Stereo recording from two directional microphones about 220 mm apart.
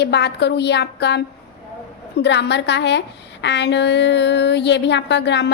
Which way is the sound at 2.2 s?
50° left (ahead or behind).